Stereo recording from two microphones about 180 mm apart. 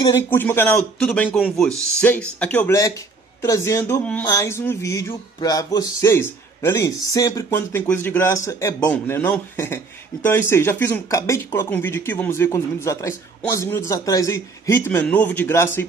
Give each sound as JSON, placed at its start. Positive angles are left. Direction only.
{"t": 0.0, "sound": "speech", "side_deg": 15}